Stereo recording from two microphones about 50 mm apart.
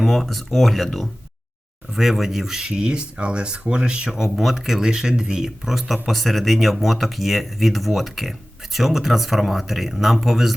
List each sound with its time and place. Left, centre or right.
0.0 s speech: centre
4.1 s speech: centre